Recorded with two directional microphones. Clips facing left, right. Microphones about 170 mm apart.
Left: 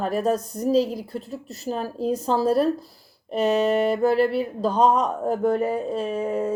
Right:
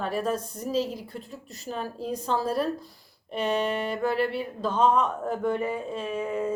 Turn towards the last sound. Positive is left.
turn(degrees=35)  # may be behind; listen again after turning